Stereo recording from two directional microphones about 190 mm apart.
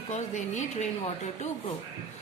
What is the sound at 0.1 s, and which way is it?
Speech, 40° left (ahead or behind).